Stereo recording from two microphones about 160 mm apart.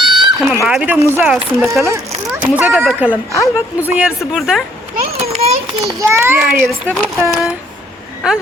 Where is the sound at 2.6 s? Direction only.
10° right (ahead or behind).